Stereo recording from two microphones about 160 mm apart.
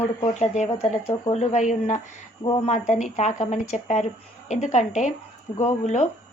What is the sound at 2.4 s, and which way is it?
Speech, 30° left (ahead or behind).